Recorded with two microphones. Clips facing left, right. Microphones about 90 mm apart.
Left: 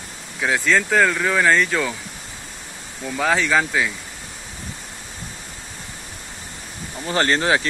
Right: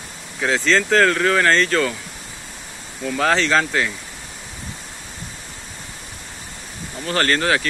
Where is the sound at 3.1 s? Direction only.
5° left (ahead or behind).